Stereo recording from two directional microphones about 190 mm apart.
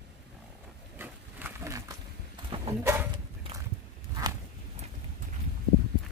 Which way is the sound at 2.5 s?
25° right (ahead or behind).